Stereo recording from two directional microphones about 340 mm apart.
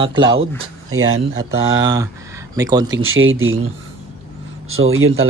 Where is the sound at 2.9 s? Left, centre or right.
Right.